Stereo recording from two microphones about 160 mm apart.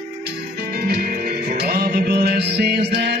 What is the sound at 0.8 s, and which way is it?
Music, 70° right (ahead or behind).